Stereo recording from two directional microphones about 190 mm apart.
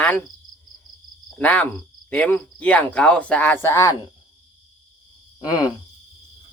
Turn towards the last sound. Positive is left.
turn(degrees=20)  # may be behind; listen again after turning